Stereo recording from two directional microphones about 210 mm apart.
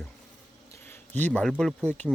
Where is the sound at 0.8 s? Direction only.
10° left (ahead or behind).